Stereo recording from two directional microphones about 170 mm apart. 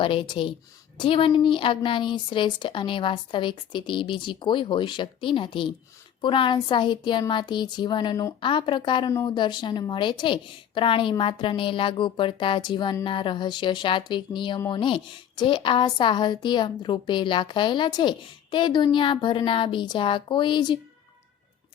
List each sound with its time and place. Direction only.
0.0 s a woman's voice: 30° left (ahead or behind)